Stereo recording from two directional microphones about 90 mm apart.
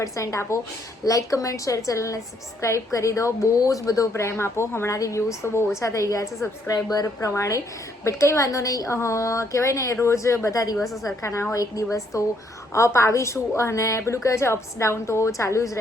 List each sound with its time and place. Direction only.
0.0 s a woman's voice: 35° left (ahead or behind)
10.8 s a woman's voice: centre (ahead or behind)
11.0 s a woman's voice: 35° left (ahead or behind)